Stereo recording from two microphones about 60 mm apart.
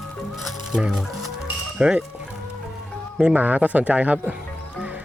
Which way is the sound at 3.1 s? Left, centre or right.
Right.